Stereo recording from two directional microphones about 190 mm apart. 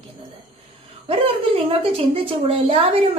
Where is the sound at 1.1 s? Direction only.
30° right (ahead or behind).